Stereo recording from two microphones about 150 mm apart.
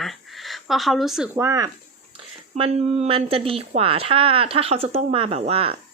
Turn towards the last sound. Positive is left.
turn(degrees=-40)  # may be behind; listen again after turning